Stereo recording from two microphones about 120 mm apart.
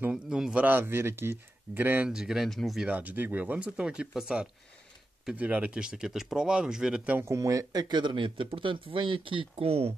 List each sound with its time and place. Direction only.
0.0 s speech: 5° right (ahead or behind)
2.9 s speech: 15° right (ahead or behind)
7.2 s speech: 25° right (ahead or behind); by 9.9 s 55° right (ahead or behind)